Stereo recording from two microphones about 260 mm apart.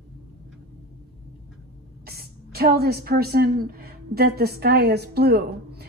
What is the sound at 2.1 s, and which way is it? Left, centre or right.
A woman's voice, right.